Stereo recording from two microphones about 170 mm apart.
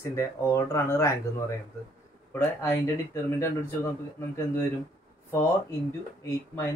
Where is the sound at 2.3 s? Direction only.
15° left (ahead or behind).